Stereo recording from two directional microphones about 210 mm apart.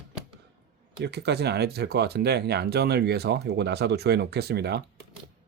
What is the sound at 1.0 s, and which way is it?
Speech, 50° right (ahead or behind).